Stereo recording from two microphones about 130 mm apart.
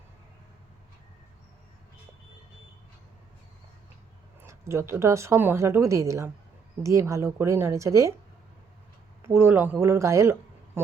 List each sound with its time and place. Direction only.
4.4 s speech: 20° right (ahead or behind)
9.2 s speech: 20° right (ahead or behind)